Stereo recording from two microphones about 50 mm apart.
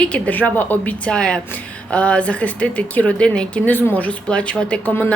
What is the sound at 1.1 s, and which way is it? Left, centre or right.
Speech, centre.